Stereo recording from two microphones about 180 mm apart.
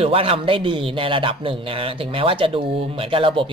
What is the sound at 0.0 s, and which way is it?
Speech, 30° right (ahead or behind).